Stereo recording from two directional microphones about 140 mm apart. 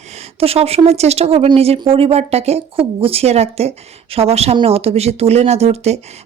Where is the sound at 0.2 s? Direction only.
45° right (ahead or behind).